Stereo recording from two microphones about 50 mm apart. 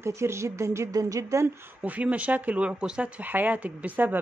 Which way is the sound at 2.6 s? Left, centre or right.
Centre.